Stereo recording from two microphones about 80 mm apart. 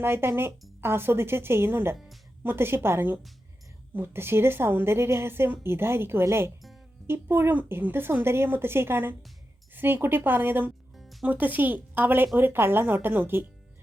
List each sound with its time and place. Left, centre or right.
0.0 s a woman's voice: right
10.9 s music: centre
11.3 s a woman's voice: right